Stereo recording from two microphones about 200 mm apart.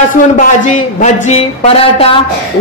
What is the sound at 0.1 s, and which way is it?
A man's voice, 40° left (ahead or behind).